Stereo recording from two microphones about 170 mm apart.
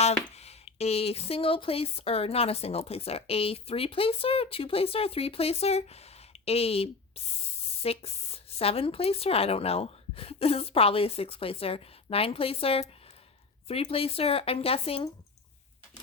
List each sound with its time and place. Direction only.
0.0 s speech: 40° left (ahead or behind)